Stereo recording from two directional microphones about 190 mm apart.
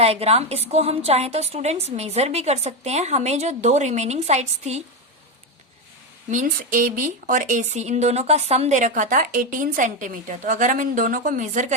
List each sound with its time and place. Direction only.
0.0 s a woman's voice: 30° right (ahead or behind)
6.3 s speech: 45° right (ahead or behind)